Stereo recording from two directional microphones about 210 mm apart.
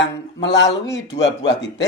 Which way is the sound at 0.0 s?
60° left (ahead or behind).